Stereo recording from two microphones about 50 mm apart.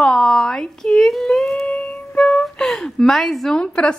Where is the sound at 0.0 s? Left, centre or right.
Centre.